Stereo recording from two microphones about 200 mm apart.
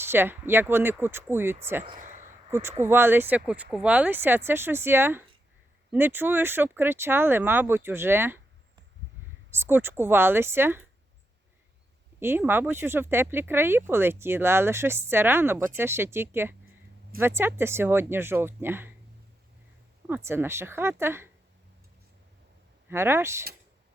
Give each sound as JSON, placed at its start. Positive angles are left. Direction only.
{"t": 0.0, "sound": "speech", "side_deg": -10}
{"t": 1.8, "sound": "a sound", "side_deg": -35}
{"t": 2.5, "sound": "speech", "side_deg": -10}
{"t": 9.5, "sound": "speech", "side_deg": -10}
{"t": 12.2, "sound": "speech", "side_deg": -10}
{"t": 20.1, "sound": "speech", "side_deg": -10}
{"t": 22.9, "sound": "speech", "side_deg": -10}